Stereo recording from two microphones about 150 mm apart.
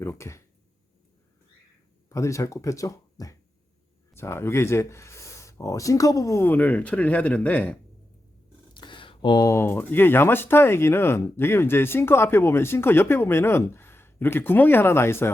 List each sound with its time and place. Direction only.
0.0 s speech: 20° left (ahead or behind)
2.0 s speech: 20° left (ahead or behind)
8.7 s speech: 30° left (ahead or behind); by 15.3 s 15° left (ahead or behind)